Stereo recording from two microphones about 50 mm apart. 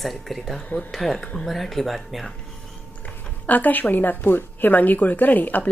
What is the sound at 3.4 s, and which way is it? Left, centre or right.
Speech, left.